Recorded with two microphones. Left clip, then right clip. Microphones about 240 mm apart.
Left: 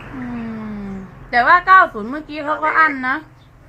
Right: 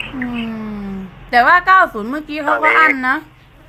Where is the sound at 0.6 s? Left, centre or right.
Right.